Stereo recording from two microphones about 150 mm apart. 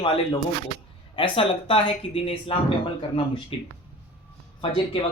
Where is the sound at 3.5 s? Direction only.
40° left (ahead or behind).